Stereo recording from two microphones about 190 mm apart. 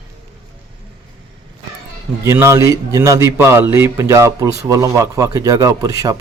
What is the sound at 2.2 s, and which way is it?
A man's voice, 15° right (ahead or behind).